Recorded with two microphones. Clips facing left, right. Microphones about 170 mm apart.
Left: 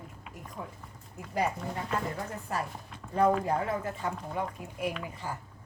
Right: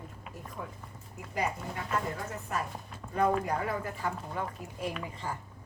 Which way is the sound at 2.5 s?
35° left (ahead or behind).